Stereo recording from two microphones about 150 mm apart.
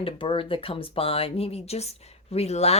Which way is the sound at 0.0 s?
35° left (ahead or behind).